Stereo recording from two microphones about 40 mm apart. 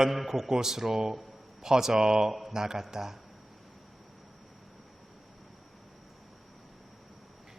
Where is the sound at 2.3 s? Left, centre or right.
Centre.